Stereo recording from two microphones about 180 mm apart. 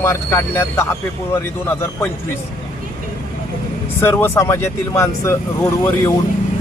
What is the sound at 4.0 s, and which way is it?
Speech, 15° left (ahead or behind).